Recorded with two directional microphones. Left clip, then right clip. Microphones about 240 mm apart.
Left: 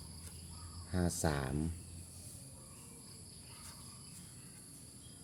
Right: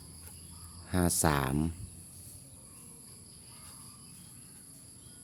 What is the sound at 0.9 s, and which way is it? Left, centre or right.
Speech, right.